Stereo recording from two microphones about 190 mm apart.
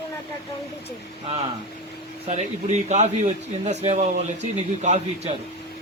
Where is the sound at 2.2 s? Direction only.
35° right (ahead or behind).